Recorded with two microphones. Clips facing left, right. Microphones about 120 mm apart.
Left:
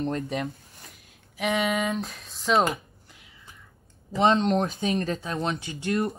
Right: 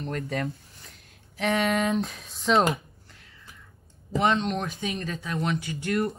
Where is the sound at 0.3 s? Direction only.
20° left (ahead or behind).